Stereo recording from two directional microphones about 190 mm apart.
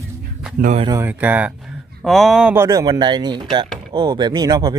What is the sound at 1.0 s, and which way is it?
A man's voice, 10° right (ahead or behind).